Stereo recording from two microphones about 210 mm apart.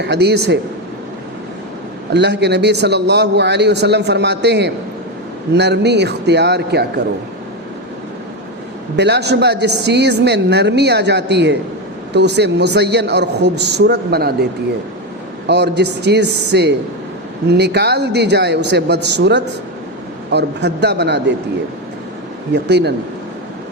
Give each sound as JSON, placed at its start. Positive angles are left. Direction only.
{"t": 0.0, "sound": "a woman's voice", "side_deg": -55}
{"t": 2.1, "sound": "a woman's voice", "side_deg": -55}
{"t": 9.0, "sound": "a woman's voice", "side_deg": -55}
{"t": 15.4, "sound": "a woman's voice", "side_deg": -55}
{"t": 22.5, "sound": "a woman's voice", "side_deg": -55}